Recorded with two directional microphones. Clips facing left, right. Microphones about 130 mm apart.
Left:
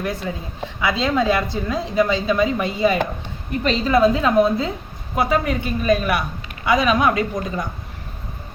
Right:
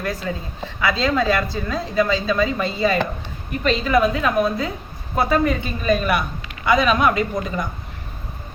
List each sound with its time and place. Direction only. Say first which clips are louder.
0.0 s a woman's voice: even; 20° left (ahead or behind)
3.6 s a woman's voice: left 2 dB; 30° left (ahead or behind)
5.1 s a woman's voice: right 1 dB; 10° left (ahead or behind)